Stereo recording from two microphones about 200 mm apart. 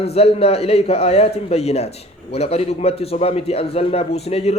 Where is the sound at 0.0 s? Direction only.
30° left (ahead or behind).